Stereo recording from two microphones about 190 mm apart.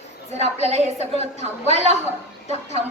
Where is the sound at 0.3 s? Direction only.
35° right (ahead or behind).